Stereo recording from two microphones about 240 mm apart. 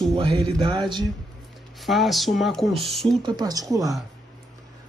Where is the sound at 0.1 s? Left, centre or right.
Right.